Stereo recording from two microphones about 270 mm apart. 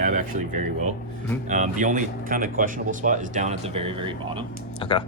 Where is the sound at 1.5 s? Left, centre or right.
Right.